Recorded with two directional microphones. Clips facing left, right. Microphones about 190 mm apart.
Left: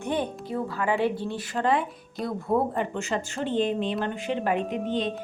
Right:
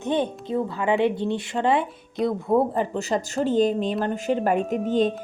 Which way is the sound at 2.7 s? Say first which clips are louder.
Right 4 dB; 35° right (ahead or behind).